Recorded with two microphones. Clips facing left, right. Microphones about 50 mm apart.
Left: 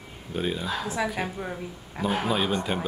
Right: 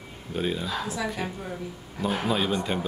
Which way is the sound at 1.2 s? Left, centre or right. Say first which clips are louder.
Left 2 dB; left.